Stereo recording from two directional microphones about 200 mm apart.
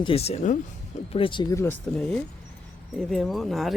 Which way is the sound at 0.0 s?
30° left (ahead or behind).